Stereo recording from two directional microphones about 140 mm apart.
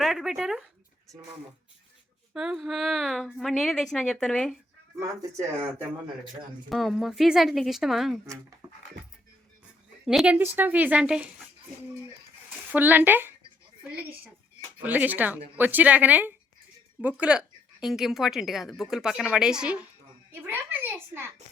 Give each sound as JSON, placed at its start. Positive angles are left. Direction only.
{"t": 0.0, "sound": "a sound", "side_deg": 0}
{"t": 2.3, "sound": "speech", "side_deg": -5}
{"t": 6.7, "sound": "speech", "side_deg": 0}
{"t": 8.6, "sound": "dog", "side_deg": -15}
{"t": 10.1, "sound": "a woman's voice", "side_deg": -5}
{"t": 12.5, "sound": "speech", "side_deg": -15}
{"t": 14.8, "sound": "a woman's voice", "side_deg": -10}